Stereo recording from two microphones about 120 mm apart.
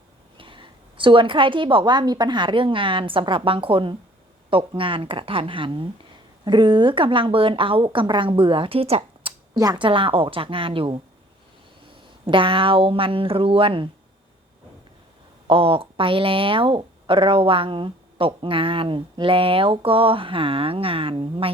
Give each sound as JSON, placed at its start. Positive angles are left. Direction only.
{"t": 0.3, "sound": "a woman's voice", "side_deg": -45}
{"t": 9.6, "sound": "speech", "side_deg": -35}
{"t": 12.2, "sound": "speech", "side_deg": -45}
{"t": 15.4, "sound": "speech", "side_deg": -50}